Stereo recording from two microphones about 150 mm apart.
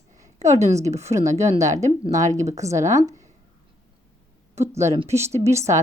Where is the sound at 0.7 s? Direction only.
20° right (ahead or behind).